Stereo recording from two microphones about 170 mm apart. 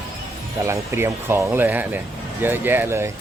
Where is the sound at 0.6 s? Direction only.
15° right (ahead or behind).